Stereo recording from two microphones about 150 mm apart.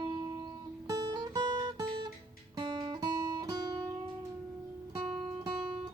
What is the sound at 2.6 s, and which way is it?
Guitar, 30° right (ahead or behind).